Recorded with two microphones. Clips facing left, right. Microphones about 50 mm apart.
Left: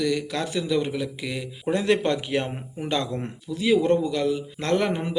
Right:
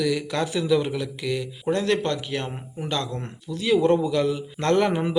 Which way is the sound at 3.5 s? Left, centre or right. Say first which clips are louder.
Right 1 dB; centre.